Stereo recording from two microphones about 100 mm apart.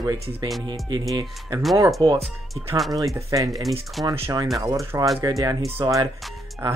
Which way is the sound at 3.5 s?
Centre (ahead or behind).